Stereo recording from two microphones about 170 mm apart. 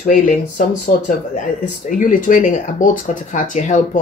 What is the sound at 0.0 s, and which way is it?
Speech, 50° left (ahead or behind).